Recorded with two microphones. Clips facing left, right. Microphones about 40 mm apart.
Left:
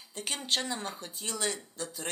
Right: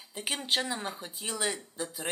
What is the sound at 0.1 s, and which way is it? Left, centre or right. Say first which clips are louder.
Speech: right 2 dB; centre.